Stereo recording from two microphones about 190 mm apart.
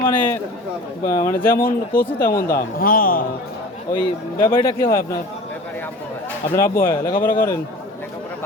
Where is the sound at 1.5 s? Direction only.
50° left (ahead or behind).